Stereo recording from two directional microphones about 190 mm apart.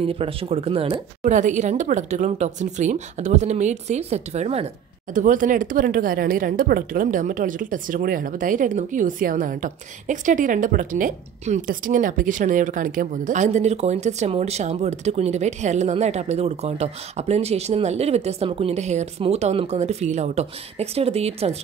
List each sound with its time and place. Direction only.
0.0 s speech: 30° right (ahead or behind)